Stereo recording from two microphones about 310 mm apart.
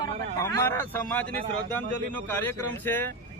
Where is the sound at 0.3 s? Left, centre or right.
Centre.